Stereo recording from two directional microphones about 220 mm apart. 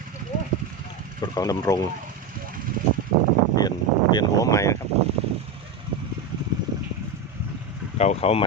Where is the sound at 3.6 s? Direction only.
20° left (ahead or behind).